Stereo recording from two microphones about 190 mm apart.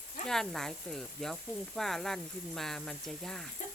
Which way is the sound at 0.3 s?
Centre (ahead or behind).